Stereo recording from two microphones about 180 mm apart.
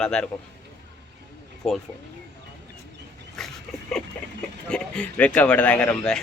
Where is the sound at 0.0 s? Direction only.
5° left (ahead or behind).